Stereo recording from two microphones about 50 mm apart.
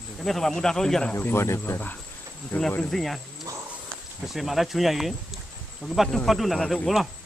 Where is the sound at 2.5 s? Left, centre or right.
Left.